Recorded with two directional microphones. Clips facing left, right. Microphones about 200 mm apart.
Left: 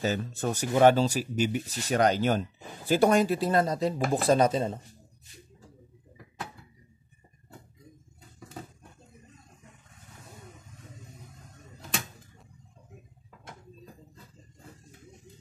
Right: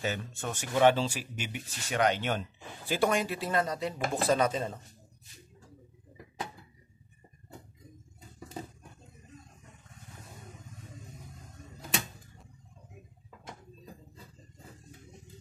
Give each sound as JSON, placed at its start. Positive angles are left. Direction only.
{"t": 0.0, "sound": "speech", "side_deg": 35}